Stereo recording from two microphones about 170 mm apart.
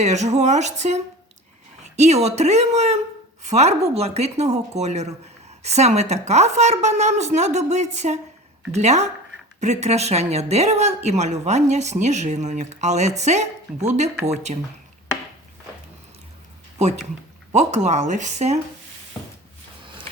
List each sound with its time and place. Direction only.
0.0 s a woman's voice: 40° right (ahead or behind)
17.5 s speech: 45° right (ahead or behind)